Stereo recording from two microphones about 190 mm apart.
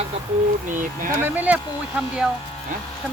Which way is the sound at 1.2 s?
10° right (ahead or behind).